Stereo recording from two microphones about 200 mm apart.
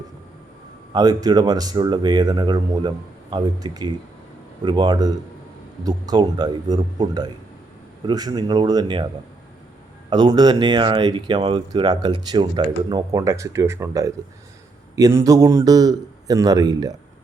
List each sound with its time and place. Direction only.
0.9 s speech: 20° right (ahead or behind)
10.1 s a man's voice: 20° right (ahead or behind)